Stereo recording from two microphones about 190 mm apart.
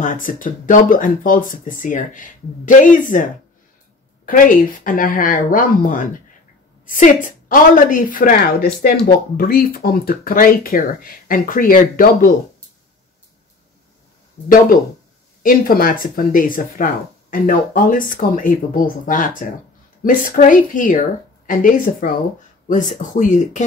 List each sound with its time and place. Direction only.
0.0 s speech: 45° left (ahead or behind)
4.3 s speech: 45° left (ahead or behind)
15.4 s speech: 50° left (ahead or behind)